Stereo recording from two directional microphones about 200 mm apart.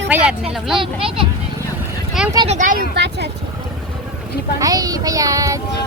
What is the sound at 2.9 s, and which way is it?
Speech, 60° right (ahead or behind).